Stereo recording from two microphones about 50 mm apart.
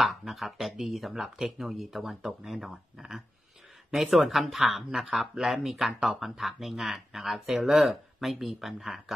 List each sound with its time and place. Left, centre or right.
0.0 s speech: centre